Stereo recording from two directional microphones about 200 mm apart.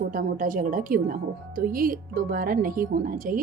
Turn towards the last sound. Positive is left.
turn(degrees=-45)  # may be behind; listen again after turning